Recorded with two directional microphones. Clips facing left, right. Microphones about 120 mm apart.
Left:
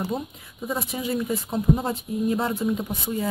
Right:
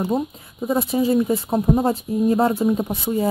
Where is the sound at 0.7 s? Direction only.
30° right (ahead or behind).